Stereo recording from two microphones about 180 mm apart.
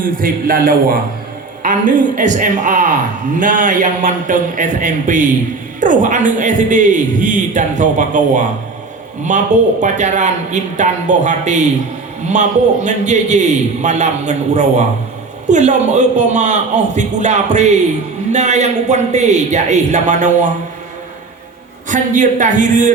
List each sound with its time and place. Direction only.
0.0 s a man's voice: 50° right (ahead or behind)
21.8 s a man's voice: 45° right (ahead or behind)